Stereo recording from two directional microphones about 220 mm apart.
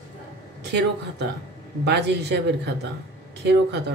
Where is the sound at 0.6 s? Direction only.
50° right (ahead or behind).